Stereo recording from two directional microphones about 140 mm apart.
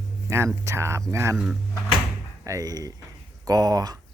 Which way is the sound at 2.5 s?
25° right (ahead or behind).